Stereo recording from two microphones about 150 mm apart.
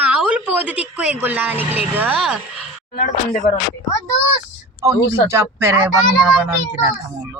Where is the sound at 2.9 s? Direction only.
55° left (ahead or behind).